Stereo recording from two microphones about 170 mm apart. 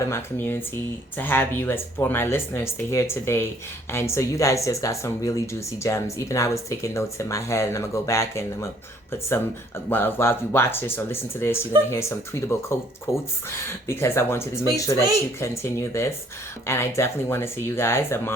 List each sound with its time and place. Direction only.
0.0 s speech: 15° left (ahead or behind)
9.9 s speech: 15° left (ahead or behind)